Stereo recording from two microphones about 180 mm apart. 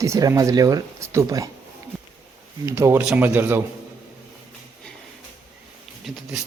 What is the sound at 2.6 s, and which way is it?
Speech, 15° right (ahead or behind).